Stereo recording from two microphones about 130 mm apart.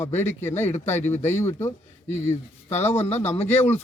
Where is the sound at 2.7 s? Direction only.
55° left (ahead or behind).